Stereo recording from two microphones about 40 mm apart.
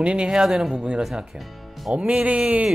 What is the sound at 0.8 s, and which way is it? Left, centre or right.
Speech, right.